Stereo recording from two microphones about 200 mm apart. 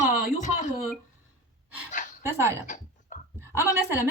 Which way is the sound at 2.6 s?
40° left (ahead or behind).